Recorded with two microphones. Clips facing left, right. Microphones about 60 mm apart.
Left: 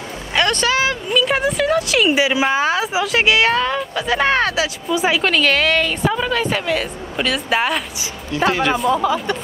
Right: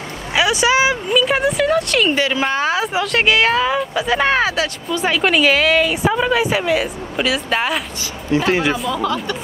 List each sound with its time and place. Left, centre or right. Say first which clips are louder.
0.3 s a sound: right 2 dB; centre
1.1 s speech: even; centre
5.2 s speech: right 2 dB; centre
8.3 s speech: right 2 dB; right
9.0 s speech: left 2 dB; centre